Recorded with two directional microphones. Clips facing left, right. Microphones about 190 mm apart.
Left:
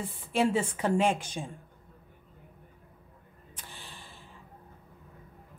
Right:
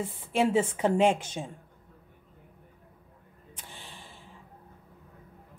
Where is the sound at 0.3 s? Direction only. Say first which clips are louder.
Right 2 dB; 20° right (ahead or behind).